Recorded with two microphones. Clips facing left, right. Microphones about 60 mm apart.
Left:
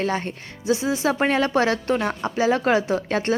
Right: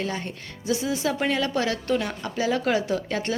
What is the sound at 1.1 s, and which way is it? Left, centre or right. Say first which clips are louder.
A woman's voice: left 5 dB; left.